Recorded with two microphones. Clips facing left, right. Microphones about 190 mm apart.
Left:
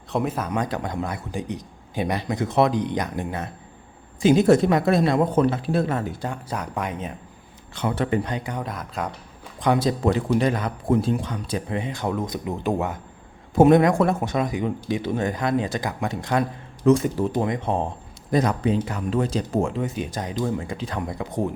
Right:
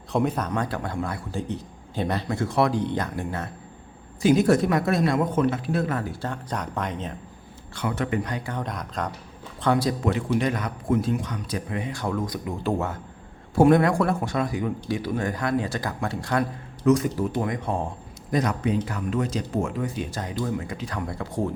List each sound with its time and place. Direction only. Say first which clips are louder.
0.1 s a man's voice: even; centre (ahead or behind); by 6.1 s 25° left (ahead or behind)
6.2 s a man's voice: left 1 dB; 10° left (ahead or behind)
7.8 s speech: left 3 dB; 30° left (ahead or behind)
8.5 s speech: left 1 dB; 5° left (ahead or behind)
9.6 s speech: left 2 dB; 20° left (ahead or behind)
10.1 s speech: left 5 dB; 35° left (ahead or behind); by 20.4 s 20° left (ahead or behind)
20.4 s speech: left 2 dB; 30° left (ahead or behind)